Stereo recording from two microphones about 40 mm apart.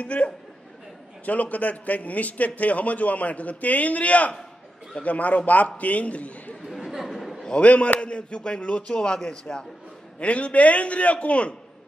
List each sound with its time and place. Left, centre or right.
0.0 s a man's voice: left
6.7 s chatter: centre
7.6 s speech: left
10.1 s a man's voice: left